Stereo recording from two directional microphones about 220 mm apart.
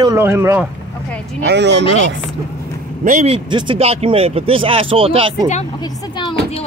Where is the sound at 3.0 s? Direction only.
30° right (ahead or behind).